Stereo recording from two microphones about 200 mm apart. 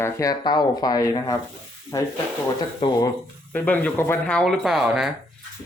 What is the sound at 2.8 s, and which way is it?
Speech, 25° left (ahead or behind).